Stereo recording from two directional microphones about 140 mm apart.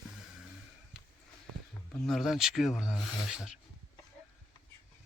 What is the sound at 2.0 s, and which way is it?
Speech, centre (ahead or behind).